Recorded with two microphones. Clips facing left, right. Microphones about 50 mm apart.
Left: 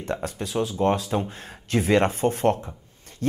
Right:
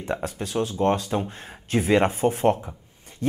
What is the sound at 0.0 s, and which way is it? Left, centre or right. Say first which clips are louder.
Speech: right 1 dB; centre.